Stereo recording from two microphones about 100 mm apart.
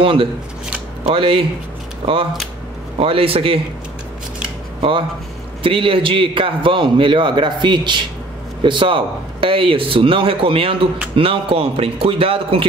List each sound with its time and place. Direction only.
0.0 s a man's voice: 60° right (ahead or behind)
3.0 s speech: 65° right (ahead or behind)
5.6 s a man's voice: 60° right (ahead or behind)